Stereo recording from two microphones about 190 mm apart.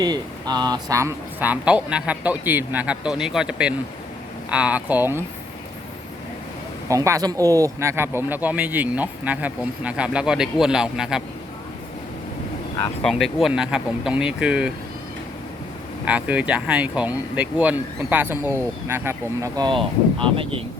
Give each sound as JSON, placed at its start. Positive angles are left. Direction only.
{"t": 0.0, "sound": "speech", "side_deg": -20}
{"t": 6.8, "sound": "speech", "side_deg": -15}
{"t": 13.0, "sound": "speech", "side_deg": 0}
{"t": 16.0, "sound": "speech", "side_deg": -5}